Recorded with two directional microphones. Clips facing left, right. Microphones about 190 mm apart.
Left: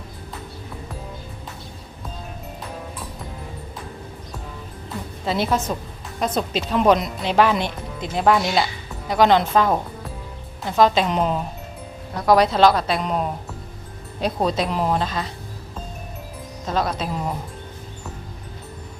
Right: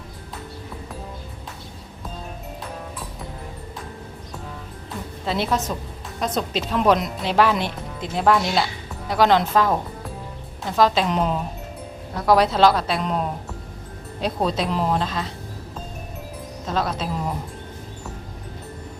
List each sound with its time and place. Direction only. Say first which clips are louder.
5.2 s speech: left 2 dB; centre (ahead or behind)
16.6 s speech: left 1 dB; centre (ahead or behind)